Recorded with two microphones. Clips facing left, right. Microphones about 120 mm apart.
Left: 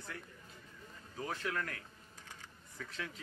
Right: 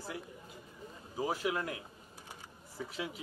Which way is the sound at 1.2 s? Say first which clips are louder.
Right 5 dB; 10° right (ahead or behind).